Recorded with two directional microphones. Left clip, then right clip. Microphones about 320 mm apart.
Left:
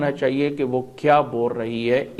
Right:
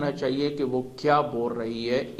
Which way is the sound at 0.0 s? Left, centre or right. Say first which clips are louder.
Left 5 dB; left.